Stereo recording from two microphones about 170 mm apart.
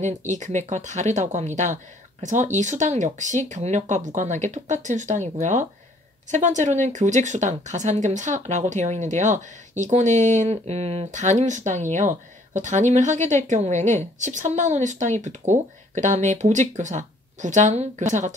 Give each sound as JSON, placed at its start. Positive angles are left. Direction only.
{"t": 0.0, "sound": "speech", "side_deg": -45}